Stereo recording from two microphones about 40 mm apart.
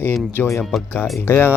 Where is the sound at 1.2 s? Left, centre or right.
Left.